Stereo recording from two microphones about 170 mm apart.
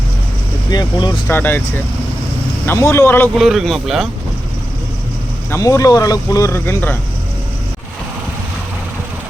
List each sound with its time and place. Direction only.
0.7 s speech: 25° left (ahead or behind)
1.3 s speech: 10° left (ahead or behind)
2.6 s speech: 15° left (ahead or behind)
3.3 s speech: centre (ahead or behind)
5.5 s speech: 20° left (ahead or behind)